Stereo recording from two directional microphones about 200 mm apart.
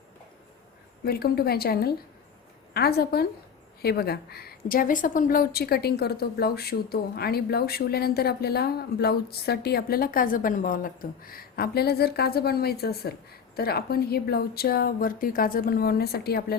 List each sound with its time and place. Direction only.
1.0 s a woman's voice: 50° left (ahead or behind)